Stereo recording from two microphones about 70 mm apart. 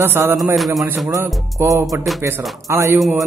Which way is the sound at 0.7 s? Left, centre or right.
Right.